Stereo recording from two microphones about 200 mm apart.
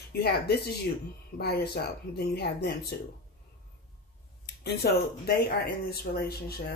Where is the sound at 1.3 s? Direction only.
55° left (ahead or behind).